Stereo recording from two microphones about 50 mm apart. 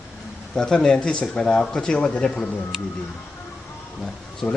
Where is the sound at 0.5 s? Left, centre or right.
Centre.